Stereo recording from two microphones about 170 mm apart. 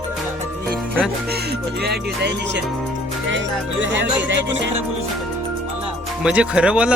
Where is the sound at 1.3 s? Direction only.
70° right (ahead or behind); by 2.6 s 85° right.